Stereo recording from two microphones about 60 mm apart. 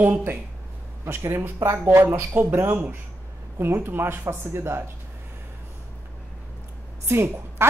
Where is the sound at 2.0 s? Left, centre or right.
Right.